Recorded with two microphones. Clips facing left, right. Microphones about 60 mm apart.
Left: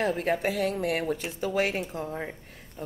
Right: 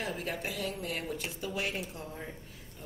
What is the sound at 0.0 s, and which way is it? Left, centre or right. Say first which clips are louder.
A woman's voice: left 10 dB; left.